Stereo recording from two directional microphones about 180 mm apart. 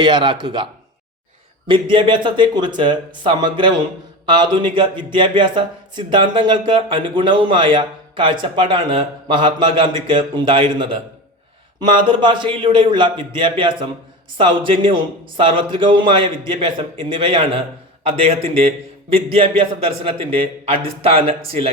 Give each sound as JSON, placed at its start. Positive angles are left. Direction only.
{"t": 0.0, "sound": "a man's voice", "side_deg": -25}